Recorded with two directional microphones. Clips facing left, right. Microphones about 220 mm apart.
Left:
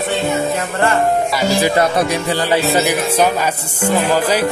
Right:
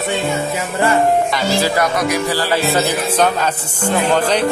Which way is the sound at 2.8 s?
10° left (ahead or behind).